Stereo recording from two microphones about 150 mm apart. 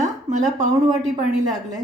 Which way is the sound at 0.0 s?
55° right (ahead or behind).